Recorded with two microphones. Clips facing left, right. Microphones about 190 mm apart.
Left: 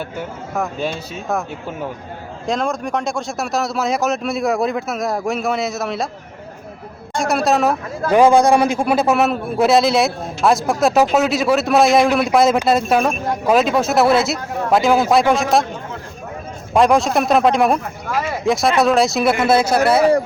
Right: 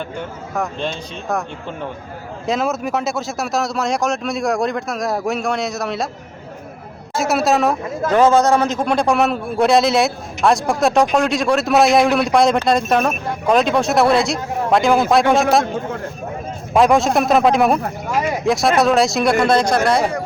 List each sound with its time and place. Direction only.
0.2 s speech: 5° left (ahead or behind)
2.5 s speech: 5° right (ahead or behind)
7.1 s speech: 5° right (ahead or behind)
8.1 s speech: 10° left (ahead or behind)
16.7 s speech: centre (ahead or behind)
18.1 s speech: 15° right (ahead or behind)
18.4 s speech: centre (ahead or behind)